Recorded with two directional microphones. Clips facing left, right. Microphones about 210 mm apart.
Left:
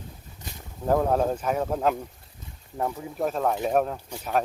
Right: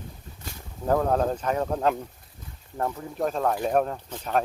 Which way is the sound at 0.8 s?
5° left (ahead or behind).